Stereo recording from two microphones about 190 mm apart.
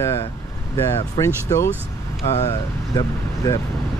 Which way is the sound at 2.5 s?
20° left (ahead or behind).